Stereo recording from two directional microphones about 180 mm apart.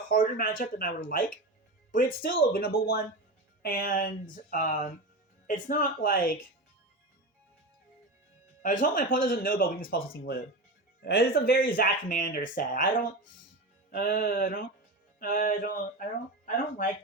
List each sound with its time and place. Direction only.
0.1 s speech: 50° left (ahead or behind)
2.2 s speech: 55° left (ahead or behind)
8.6 s speech: 45° left (ahead or behind)
13.9 s speech: 55° left (ahead or behind)